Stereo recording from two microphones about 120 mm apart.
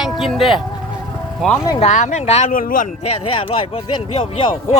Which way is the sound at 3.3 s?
50° left (ahead or behind).